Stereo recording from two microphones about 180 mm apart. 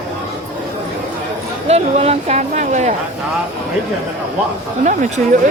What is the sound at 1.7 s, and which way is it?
Speech, 35° right (ahead or behind).